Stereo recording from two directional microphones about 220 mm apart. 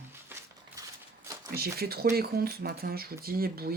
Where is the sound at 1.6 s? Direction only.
45° right (ahead or behind).